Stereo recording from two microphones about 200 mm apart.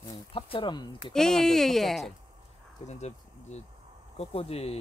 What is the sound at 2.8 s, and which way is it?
Speech, 35° left (ahead or behind).